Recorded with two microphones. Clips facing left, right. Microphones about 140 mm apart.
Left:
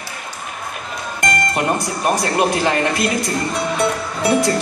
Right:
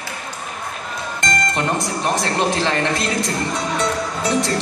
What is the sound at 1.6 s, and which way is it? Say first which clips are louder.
Speech: left 2 dB; 10° left (ahead or behind).